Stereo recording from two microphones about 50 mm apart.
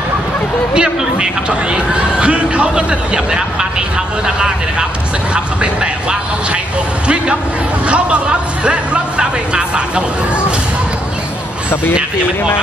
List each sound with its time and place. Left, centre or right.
0.7 s a man's voice: centre
5.3 s a man's voice: centre
7.9 s a man's voice: right